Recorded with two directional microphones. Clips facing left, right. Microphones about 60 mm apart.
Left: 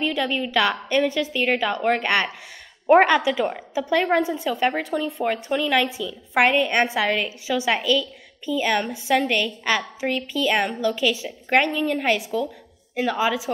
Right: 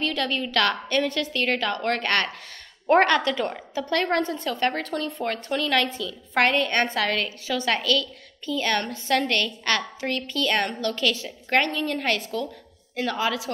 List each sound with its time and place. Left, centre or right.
0.0 s a woman's voice: centre